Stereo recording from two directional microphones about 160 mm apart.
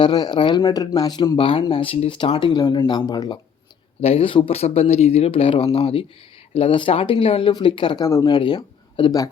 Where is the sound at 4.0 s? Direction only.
35° left (ahead or behind).